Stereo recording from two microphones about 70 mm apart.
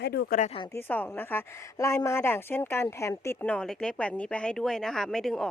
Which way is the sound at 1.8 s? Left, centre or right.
Left.